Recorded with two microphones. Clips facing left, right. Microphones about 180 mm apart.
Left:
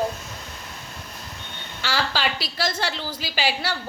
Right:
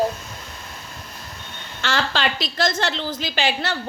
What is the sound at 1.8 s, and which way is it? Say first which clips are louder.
A woman's voice: right 2 dB; 10° left (ahead or behind).